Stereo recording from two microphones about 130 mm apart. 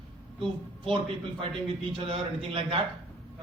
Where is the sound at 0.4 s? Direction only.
40° right (ahead or behind).